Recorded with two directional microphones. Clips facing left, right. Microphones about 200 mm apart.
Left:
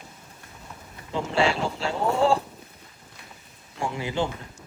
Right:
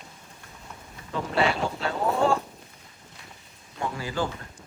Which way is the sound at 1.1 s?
30° left (ahead or behind).